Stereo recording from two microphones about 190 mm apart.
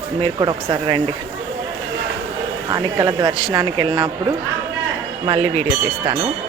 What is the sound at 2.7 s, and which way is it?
Speech, 25° right (ahead or behind).